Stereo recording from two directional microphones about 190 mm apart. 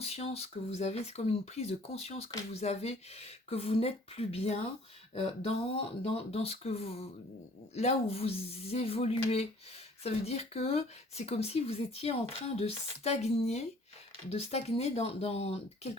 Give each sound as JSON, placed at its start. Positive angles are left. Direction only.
{"t": 0.0, "sound": "speech", "side_deg": 35}